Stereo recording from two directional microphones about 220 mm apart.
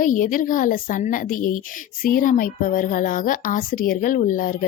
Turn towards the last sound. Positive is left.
turn(degrees=40)  # may be behind; listen again after turning